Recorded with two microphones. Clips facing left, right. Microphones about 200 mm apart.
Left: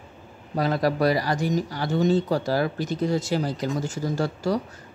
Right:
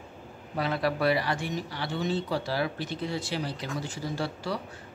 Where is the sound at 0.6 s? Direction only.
40° left (ahead or behind).